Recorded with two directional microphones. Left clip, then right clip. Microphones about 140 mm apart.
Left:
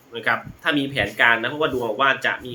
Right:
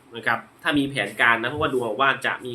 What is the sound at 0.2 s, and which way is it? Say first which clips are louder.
Speech: left 2 dB; 15° right (ahead or behind).